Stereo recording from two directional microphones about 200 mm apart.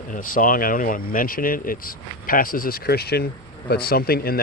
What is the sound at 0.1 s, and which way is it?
Speech, 45° left (ahead or behind).